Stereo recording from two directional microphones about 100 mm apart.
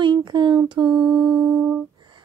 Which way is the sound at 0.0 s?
50° right (ahead or behind).